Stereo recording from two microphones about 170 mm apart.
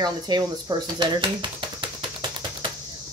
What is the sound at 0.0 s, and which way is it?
Speech, 25° right (ahead or behind).